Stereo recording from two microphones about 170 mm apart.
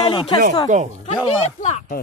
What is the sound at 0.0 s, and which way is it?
Speech, 30° left (ahead or behind).